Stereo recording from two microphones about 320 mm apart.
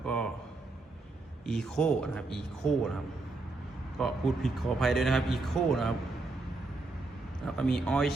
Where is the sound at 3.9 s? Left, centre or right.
Centre.